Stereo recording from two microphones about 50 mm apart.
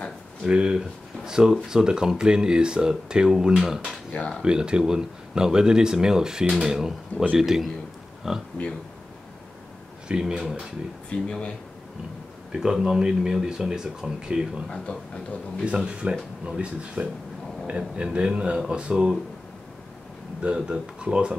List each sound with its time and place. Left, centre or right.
0.5 s speech: centre
10.0 s speech: centre
11.1 s speech: centre
12.5 s speech: centre
14.9 s speech: left
15.6 s speech: right
20.4 s speech: centre